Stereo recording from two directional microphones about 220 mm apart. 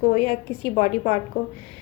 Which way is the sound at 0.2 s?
25° right (ahead or behind).